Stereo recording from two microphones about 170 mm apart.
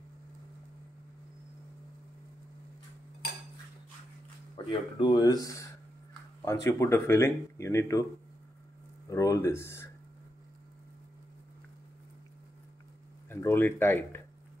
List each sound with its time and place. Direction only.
4.6 s speech: 25° left (ahead or behind)
9.1 s speech: 20° left (ahead or behind)
13.3 s speech: 15° left (ahead or behind)